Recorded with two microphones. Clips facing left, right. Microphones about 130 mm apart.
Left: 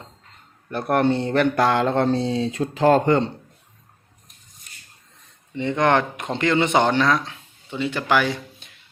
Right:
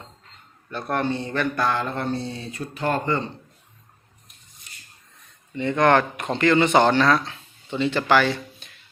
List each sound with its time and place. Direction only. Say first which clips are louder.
0.9 s mantra: left 6 dB; 60° left (ahead or behind)
5.5 s speech: right 1 dB; 20° left (ahead or behind)